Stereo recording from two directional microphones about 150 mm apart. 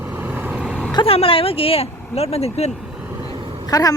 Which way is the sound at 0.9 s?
40° left (ahead or behind).